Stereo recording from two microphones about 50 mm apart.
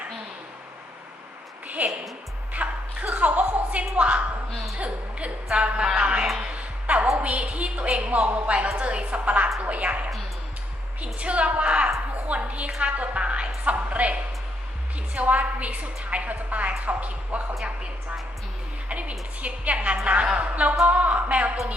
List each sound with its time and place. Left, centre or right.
1.6 s a sound: right
2.5 s music: right
3.1 s a sound: right
4.8 s a woman's voice: right
6.4 s music: right
7.2 s a woman's voice: right
18.9 s a woman's voice: right